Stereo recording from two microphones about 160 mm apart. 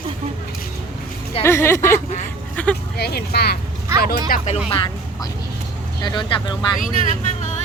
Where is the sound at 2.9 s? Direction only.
80° left.